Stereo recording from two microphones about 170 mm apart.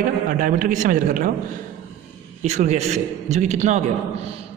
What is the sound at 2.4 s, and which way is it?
A man's voice, 40° right (ahead or behind).